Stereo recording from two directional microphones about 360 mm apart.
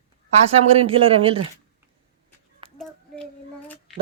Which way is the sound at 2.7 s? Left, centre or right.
Centre.